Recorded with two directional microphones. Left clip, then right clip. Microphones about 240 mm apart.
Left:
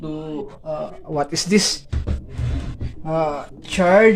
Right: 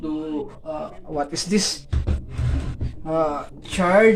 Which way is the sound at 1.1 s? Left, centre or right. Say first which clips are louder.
Left 4 dB; left.